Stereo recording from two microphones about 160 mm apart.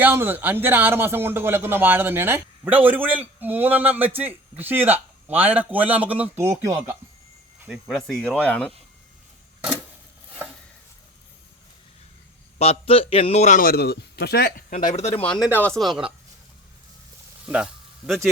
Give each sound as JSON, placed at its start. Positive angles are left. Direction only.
{"t": 0.0, "sound": "speech", "side_deg": -10}
{"t": 7.6, "sound": "speech", "side_deg": -5}
{"t": 12.5, "sound": "a man's voice", "side_deg": 35}
{"t": 14.7, "sound": "a man's voice", "side_deg": 50}
{"t": 15.1, "sound": "speech", "side_deg": 10}
{"t": 17.4, "sound": "speech", "side_deg": -5}